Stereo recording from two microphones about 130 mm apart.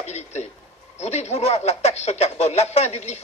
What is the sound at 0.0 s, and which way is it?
Speech, 60° left (ahead or behind).